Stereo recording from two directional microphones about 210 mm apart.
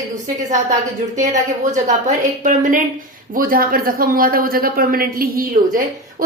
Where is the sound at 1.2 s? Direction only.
35° right (ahead or behind).